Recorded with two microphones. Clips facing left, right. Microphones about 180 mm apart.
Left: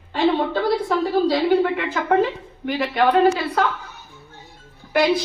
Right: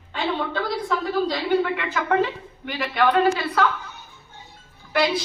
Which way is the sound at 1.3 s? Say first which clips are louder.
Left 4 dB; 45° left (ahead or behind).